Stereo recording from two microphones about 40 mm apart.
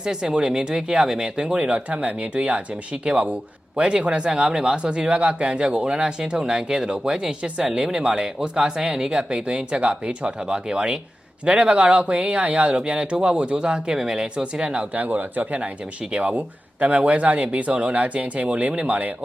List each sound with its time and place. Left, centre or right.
0.0 s speech: centre
7.4 s speech: right
7.9 s speech: centre
14.9 s speech: right